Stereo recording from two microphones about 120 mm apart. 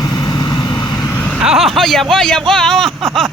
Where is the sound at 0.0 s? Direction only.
35° left (ahead or behind).